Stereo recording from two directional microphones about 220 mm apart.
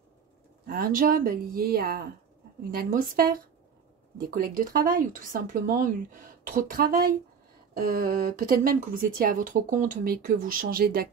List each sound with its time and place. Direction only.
0.7 s speech: 40° right (ahead or behind)